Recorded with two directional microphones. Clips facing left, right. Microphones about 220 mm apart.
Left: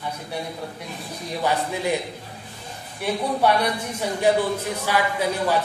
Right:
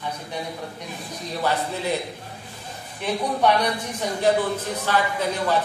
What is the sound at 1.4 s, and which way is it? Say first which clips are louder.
Speech: left 1 dB; 15° left (ahead or behind).